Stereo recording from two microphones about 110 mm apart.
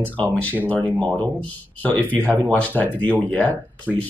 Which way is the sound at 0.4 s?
15° left (ahead or behind).